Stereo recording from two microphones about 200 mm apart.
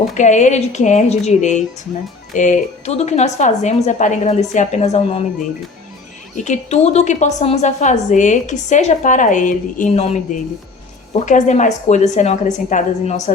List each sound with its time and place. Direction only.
0.1 s a woman's voice: 35° left (ahead or behind)
6.3 s a woman's voice: 35° left (ahead or behind)